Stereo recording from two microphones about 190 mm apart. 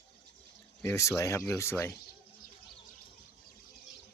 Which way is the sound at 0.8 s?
15° left (ahead or behind).